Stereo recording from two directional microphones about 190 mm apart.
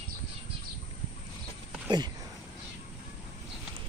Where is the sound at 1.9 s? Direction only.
20° right (ahead or behind).